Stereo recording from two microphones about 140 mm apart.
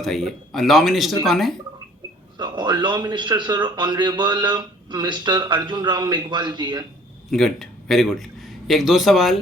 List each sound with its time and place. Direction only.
0.0 s speech: centre (ahead or behind)
2.4 s a man's voice: 30° right (ahead or behind)
7.3 s a man's voice: centre (ahead or behind)